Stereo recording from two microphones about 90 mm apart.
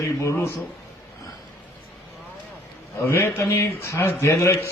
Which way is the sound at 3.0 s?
25° left (ahead or behind).